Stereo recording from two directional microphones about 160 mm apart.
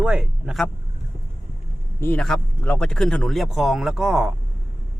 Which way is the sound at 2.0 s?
15° left (ahead or behind).